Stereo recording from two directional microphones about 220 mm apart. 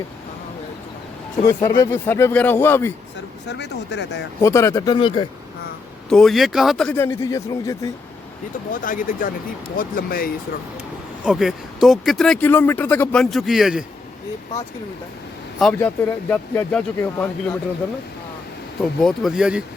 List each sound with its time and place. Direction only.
1.5 s speech: 15° left (ahead or behind)
3.5 s speech: 50° left (ahead or behind)
4.4 s speech: 15° left (ahead or behind)
6.1 s speech: centre (ahead or behind)
8.7 s speech: 40° left (ahead or behind)
11.3 s speech: centre (ahead or behind)
15.5 s speech: centre (ahead or behind)
18.8 s speech: centre (ahead or behind)